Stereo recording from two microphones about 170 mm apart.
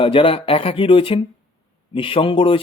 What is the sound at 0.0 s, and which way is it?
A man's voice, 30° left (ahead or behind).